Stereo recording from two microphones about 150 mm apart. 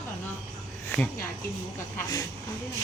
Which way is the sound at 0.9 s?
10° left (ahead or behind).